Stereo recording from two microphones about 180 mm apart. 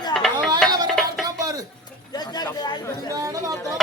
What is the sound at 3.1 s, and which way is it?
Speech, 20° right (ahead or behind).